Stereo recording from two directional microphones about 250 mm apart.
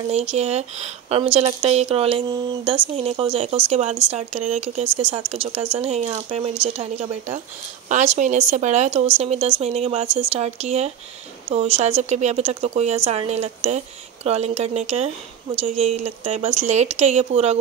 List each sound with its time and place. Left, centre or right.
0.1 s speech: right